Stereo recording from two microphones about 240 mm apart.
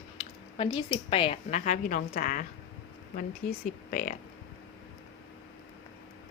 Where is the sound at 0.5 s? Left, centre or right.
Left.